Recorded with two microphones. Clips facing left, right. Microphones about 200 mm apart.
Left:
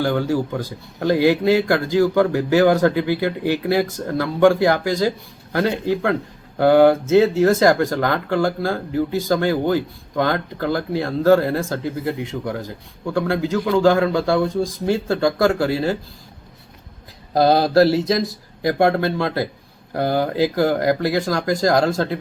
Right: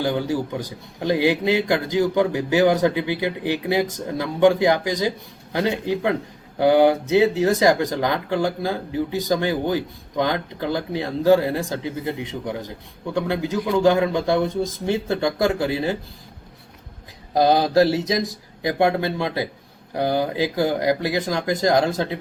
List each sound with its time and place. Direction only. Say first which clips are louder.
0.0 s speech: left 3 dB; 15° right (ahead or behind)
17.3 s speech: left 2 dB; 15° right (ahead or behind)